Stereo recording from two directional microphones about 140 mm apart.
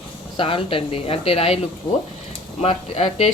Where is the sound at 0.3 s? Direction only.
40° left (ahead or behind).